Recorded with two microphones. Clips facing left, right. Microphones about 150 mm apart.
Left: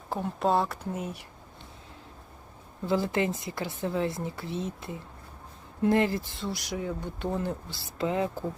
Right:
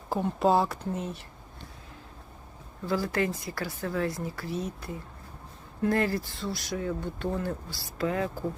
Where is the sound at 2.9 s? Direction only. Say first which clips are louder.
Left 1 dB; 20° left (ahead or behind).